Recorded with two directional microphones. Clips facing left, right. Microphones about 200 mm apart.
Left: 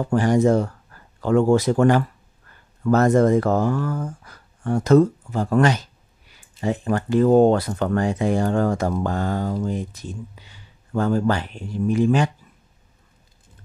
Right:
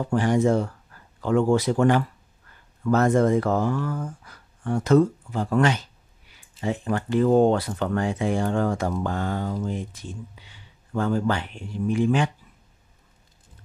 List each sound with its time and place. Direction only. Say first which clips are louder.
0.0 s speech: left 3 dB; 45° left (ahead or behind)